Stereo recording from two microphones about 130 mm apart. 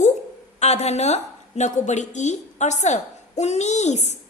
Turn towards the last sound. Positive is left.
turn(degrees=60)  # may be behind; listen again after turning